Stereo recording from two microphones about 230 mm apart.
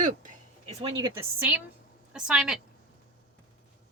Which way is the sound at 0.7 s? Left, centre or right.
Right.